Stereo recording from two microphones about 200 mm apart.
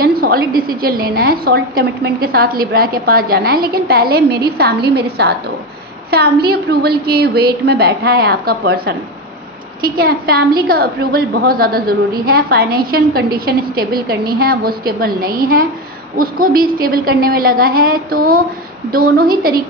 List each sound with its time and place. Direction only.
0.0 s a woman's voice: 50° right (ahead or behind)